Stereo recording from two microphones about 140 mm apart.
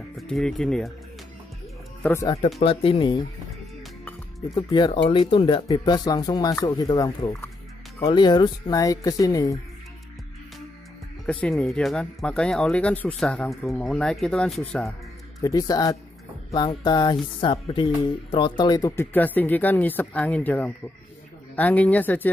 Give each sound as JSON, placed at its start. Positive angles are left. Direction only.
{"t": 0.2, "sound": "speech", "side_deg": 5}
{"t": 2.6, "sound": "speech", "side_deg": 40}
{"t": 4.6, "sound": "speech", "side_deg": 35}
{"t": 11.4, "sound": "speech", "side_deg": 5}
{"t": 15.4, "sound": "speech", "side_deg": 25}